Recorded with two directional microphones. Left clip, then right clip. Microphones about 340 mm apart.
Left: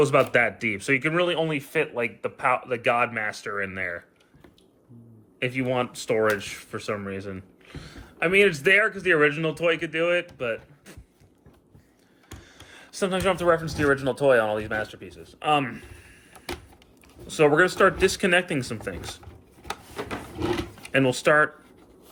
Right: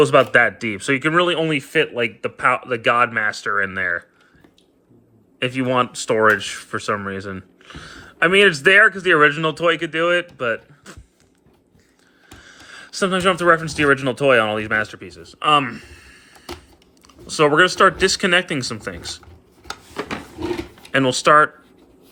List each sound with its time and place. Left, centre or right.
0.0 s speech: centre
5.4 s speech: centre
12.4 s speech: centre
17.2 s speech: centre
20.9 s speech: centre